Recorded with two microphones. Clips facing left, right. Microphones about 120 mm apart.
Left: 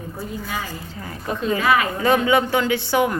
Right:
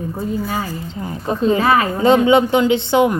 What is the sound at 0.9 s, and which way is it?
Speech, 25° right (ahead or behind).